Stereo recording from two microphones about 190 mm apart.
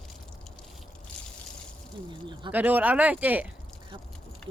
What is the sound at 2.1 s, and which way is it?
Speech, 25° right (ahead or behind).